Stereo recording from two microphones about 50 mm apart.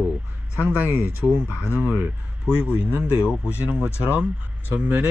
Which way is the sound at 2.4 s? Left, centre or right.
Right.